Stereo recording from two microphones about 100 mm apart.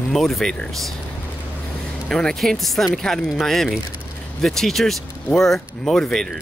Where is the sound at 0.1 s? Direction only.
5° left (ahead or behind).